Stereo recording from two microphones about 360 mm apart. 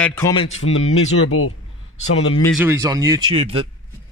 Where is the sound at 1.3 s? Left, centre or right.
Left.